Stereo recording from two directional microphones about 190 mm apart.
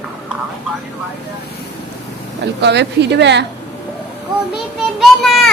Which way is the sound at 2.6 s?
65° right (ahead or behind).